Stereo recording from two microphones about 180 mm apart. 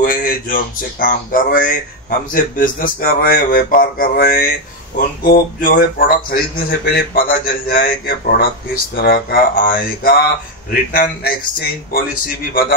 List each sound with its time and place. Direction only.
0.0 s speech: 50° left (ahead or behind)